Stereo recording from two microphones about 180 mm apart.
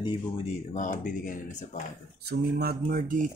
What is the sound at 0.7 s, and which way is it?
Speech, 45° left (ahead or behind).